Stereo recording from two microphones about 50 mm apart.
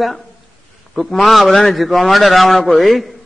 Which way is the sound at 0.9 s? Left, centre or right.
Centre.